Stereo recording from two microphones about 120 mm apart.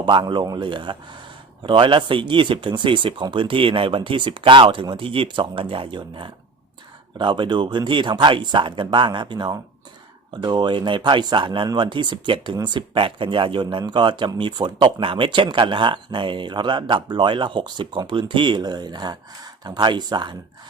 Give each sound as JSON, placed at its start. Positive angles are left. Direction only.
{"t": 0.0, "sound": "speech", "side_deg": -40}